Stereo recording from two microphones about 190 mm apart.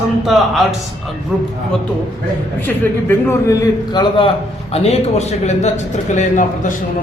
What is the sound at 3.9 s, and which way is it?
A man's voice, 25° left (ahead or behind).